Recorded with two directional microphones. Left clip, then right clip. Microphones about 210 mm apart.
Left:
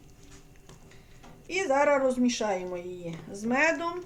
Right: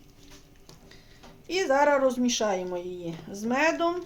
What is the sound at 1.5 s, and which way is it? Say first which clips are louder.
Speech: right 2 dB; 30° right (ahead or behind).